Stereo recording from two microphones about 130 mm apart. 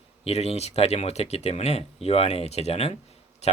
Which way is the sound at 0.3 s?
55° left (ahead or behind).